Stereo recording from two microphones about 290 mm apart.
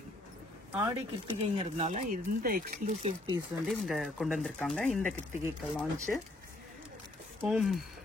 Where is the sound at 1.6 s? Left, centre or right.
Right.